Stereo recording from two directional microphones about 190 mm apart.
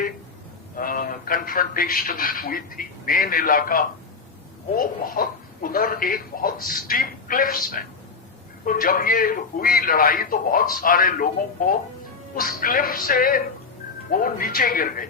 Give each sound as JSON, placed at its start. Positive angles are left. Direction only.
{"t": 0.8, "sound": "a man's voice", "side_deg": 50}